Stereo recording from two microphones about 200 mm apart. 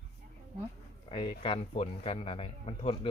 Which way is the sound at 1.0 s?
25° left (ahead or behind).